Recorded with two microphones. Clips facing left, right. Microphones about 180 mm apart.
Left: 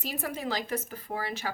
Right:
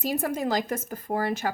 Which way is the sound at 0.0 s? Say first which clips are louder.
Right 7 dB; 45° right (ahead or behind).